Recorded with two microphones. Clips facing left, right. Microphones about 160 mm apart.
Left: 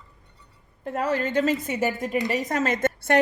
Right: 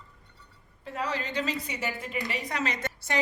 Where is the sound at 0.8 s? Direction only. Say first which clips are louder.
Left 7 dB; 50° left (ahead or behind).